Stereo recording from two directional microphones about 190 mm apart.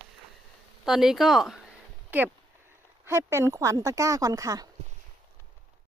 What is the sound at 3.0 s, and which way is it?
Speech, 15° right (ahead or behind).